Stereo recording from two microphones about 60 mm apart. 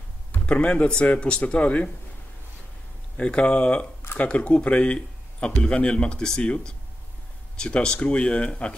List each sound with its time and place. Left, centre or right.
0.5 s speech: centre
3.2 s speech: centre